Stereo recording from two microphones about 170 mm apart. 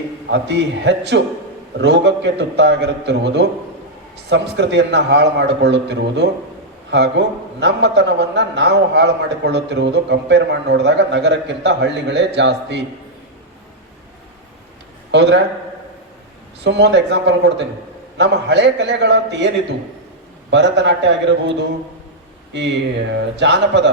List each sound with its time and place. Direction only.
0.3 s a man's voice: 90° right
15.1 s a man's voice: 90° right
16.6 s a man's voice: 90° right
20.5 s a man's voice: 90° right